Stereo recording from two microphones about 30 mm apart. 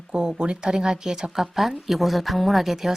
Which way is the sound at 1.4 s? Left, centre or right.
Centre.